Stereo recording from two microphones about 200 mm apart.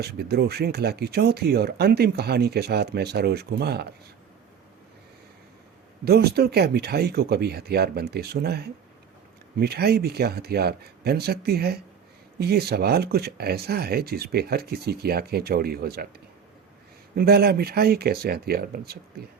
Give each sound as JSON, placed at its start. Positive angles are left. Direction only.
{"t": 0.0, "sound": "speech", "side_deg": -55}
{"t": 6.1, "sound": "speech", "side_deg": -55}
{"t": 17.2, "sound": "speech", "side_deg": -50}